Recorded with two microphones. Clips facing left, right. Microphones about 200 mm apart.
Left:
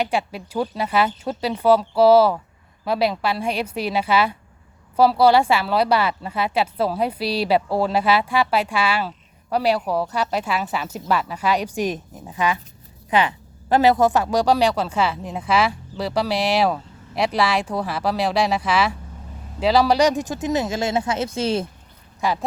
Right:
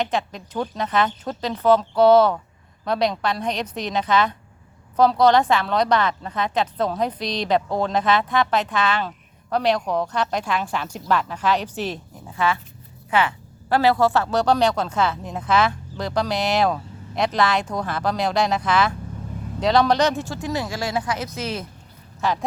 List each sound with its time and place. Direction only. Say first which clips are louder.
0.0 s a woman's voice: left 1 dB; 10° left (ahead or behind); by 21.7 s 30° left (ahead or behind)
22.2 s a woman's voice: left 1 dB; 10° left (ahead or behind)